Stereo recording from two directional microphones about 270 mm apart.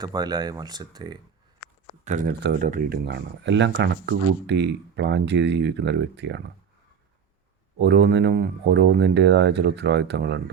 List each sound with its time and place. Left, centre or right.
0.0 s speech: centre
2.0 s speech: right
7.8 s speech: right